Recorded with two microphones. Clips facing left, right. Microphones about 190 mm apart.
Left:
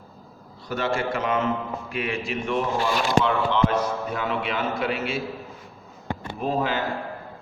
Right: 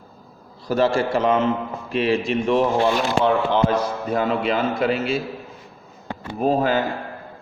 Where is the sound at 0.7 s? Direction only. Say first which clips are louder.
Right 7 dB; 35° right (ahead or behind).